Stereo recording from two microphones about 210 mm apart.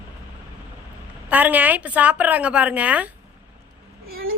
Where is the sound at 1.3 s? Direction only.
10° right (ahead or behind).